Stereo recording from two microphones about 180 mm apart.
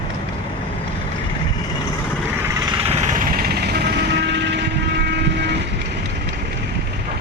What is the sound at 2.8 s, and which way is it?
Vehicle, 40° right (ahead or behind).